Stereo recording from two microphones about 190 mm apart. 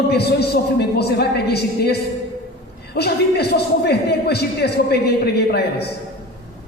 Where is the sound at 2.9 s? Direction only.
60° left (ahead or behind).